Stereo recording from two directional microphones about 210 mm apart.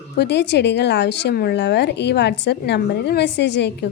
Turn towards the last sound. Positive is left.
turn(degrees=55)  # may be behind; listen again after turning